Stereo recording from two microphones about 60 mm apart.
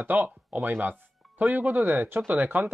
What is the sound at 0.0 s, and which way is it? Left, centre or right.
Speech, right.